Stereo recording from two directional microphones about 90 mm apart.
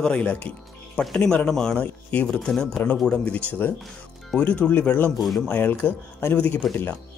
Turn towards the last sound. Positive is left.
turn(degrees=15)  # may be behind; listen again after turning